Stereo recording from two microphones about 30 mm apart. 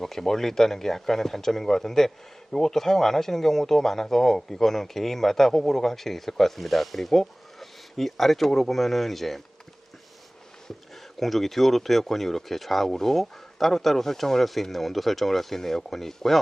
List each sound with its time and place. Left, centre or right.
0.0 s speech: centre
11.2 s speech: centre